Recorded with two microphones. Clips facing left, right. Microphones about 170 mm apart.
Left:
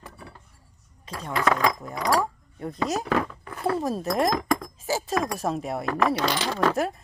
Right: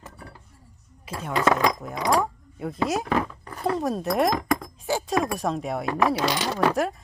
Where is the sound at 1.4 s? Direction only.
20° right (ahead or behind).